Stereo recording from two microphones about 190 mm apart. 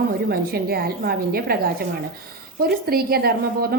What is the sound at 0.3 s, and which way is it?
Speech, 55° right (ahead or behind).